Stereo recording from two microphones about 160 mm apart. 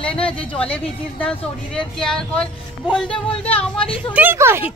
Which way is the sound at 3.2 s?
35° left (ahead or behind).